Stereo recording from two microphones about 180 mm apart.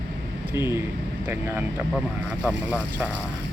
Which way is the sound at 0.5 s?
15° right (ahead or behind).